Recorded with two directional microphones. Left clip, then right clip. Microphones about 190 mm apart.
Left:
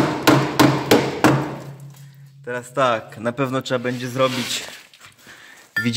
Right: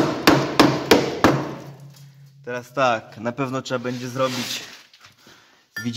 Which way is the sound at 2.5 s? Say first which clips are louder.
Left 1 dB; 5° right (ahead or behind).